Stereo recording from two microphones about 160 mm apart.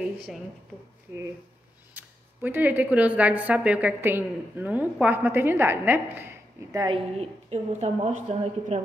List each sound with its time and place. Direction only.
2.0 s speech: 10° right (ahead or behind)
6.8 s a woman's voice: 35° right (ahead or behind)